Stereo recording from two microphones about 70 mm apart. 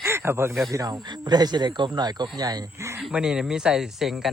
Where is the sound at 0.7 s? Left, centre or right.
Right.